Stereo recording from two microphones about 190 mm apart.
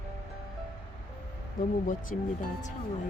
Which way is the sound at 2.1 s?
40° left (ahead or behind).